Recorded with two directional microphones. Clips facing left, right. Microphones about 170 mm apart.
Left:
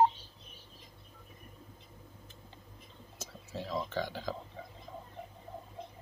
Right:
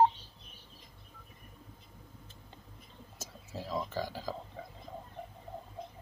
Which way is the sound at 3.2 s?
5° right (ahead or behind).